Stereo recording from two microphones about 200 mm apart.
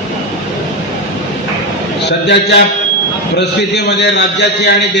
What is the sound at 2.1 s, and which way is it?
A man's voice, 60° left (ahead or behind).